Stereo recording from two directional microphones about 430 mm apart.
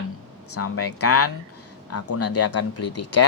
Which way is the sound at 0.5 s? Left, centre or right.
Left.